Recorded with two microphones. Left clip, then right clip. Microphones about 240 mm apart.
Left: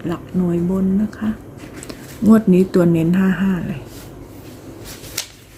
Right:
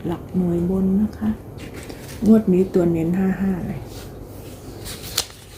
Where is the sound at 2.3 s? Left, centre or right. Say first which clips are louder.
Left 2 dB; left.